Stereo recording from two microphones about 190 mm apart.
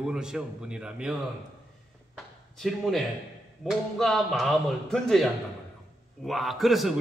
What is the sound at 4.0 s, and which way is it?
A man's voice, centre (ahead or behind).